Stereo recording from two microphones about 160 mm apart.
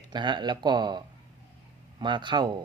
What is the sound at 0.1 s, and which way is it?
Speech, 30° right (ahead or behind).